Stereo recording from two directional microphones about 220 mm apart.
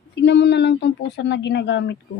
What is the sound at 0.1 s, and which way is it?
Speech, 50° left (ahead or behind).